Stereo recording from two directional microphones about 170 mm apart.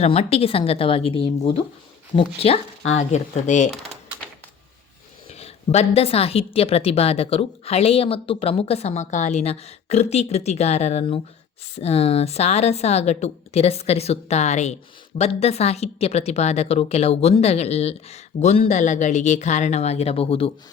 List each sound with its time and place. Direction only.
0.0 s a woman's voice: 35° left (ahead or behind)
5.3 s a woman's voice: 40° left (ahead or behind)